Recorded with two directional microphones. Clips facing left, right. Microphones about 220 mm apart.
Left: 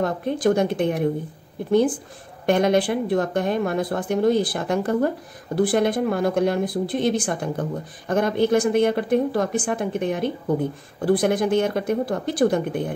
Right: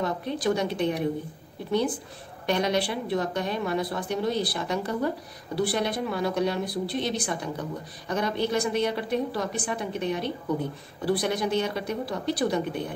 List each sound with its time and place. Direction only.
0.0 s speech: 50° left (ahead or behind)